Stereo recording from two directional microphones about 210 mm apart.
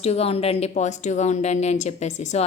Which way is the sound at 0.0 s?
30° left (ahead or behind).